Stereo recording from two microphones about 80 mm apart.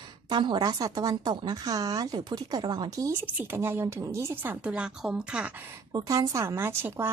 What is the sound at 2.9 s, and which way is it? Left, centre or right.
Speech, right.